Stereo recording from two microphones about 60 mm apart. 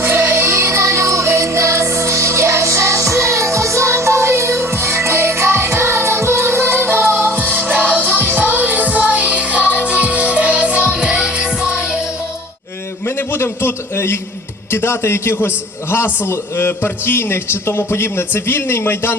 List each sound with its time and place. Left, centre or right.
0.0 s music: right; by 11.9 s centre
13.1 s a sound: left
14.7 s a man's voice: left